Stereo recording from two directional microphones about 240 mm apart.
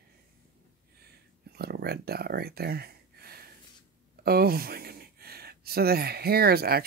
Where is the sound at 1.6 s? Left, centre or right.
Right.